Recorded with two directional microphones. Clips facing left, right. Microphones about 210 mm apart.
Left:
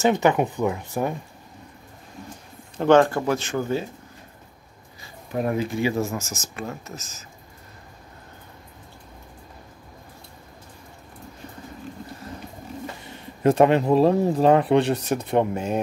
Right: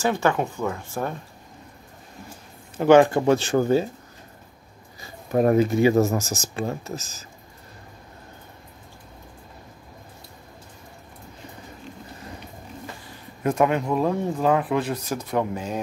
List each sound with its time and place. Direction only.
0.0 s speech: 20° left (ahead or behind)
2.8 s speech: 10° right (ahead or behind); by 3.8 s 35° right (ahead or behind)
5.3 s speech: 45° right (ahead or behind)
13.0 s speech: 30° left (ahead or behind)